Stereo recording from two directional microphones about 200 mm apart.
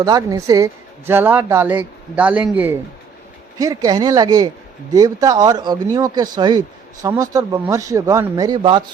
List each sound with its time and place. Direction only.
0.0 s speech: 20° right (ahead or behind)
3.6 s speech: 20° right (ahead or behind)